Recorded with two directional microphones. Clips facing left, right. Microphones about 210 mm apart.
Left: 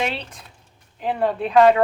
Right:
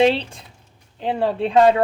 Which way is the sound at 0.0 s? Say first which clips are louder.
Right 10 dB; 30° right (ahead or behind).